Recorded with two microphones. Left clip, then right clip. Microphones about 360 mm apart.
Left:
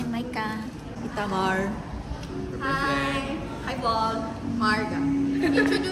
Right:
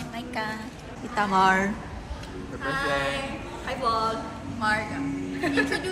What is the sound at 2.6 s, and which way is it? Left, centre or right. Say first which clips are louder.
Music: left 2 dB; centre.